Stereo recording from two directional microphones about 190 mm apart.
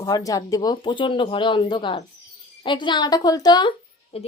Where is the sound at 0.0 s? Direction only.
20° left (ahead or behind).